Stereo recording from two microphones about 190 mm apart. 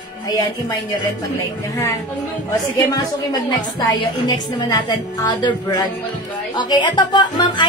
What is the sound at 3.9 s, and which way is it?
A woman's voice, 20° left (ahead or behind).